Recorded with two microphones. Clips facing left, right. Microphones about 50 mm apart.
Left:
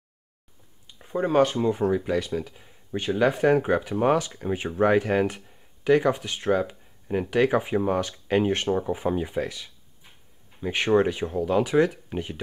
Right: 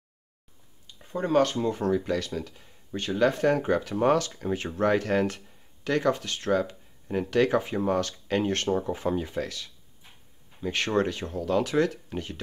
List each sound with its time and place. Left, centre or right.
0.8 s speech: centre